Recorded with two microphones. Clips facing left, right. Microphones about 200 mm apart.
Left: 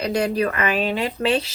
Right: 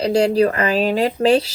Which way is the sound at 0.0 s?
30° right (ahead or behind).